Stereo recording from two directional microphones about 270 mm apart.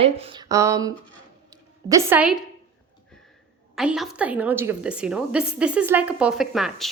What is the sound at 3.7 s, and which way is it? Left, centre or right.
A woman's voice, centre.